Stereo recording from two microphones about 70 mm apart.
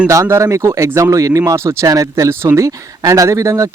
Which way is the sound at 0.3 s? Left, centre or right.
Right.